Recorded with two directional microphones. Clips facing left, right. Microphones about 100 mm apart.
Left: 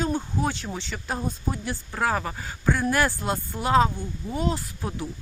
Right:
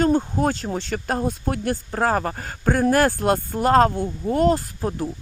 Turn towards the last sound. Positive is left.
turn(degrees=-45)  # may be behind; listen again after turning